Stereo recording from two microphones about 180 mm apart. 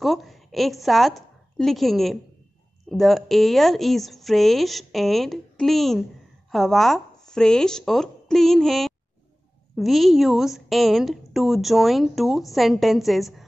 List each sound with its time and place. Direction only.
0.0 s a woman's voice: centre (ahead or behind)